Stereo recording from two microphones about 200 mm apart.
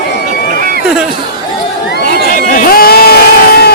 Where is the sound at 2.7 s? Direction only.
50° left (ahead or behind).